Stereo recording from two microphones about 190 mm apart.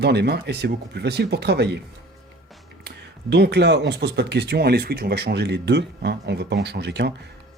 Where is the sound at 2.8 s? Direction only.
60° right (ahead or behind).